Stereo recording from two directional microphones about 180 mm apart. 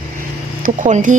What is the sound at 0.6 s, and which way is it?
Speech, 45° right (ahead or behind).